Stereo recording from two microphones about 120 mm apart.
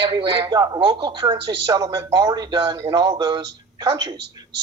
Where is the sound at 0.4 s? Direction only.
30° right (ahead or behind).